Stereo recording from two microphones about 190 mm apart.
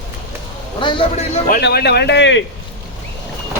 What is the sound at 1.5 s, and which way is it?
Speech, 60° left (ahead or behind).